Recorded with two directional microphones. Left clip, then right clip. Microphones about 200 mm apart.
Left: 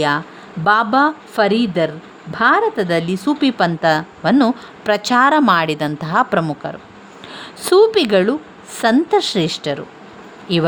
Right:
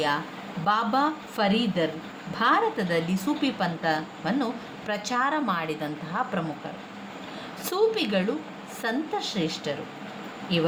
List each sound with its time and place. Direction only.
0.6 s a woman's voice: 55° left (ahead or behind)
7.6 s a woman's voice: 50° left (ahead or behind)